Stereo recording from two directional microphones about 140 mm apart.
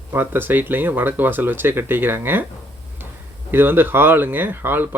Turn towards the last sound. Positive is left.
turn(degrees=-15)  # may be behind; listen again after turning